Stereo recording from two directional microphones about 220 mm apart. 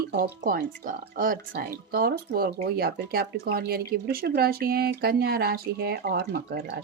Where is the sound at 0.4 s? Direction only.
40° right (ahead or behind).